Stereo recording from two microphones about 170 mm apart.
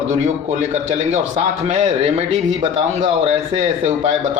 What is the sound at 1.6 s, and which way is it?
Speech, 40° right (ahead or behind).